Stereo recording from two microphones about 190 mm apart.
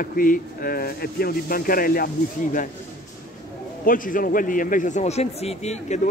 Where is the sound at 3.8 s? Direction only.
45° left (ahead or behind).